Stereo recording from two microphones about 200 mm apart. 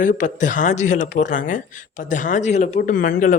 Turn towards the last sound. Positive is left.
turn(degrees=40)  # may be behind; listen again after turning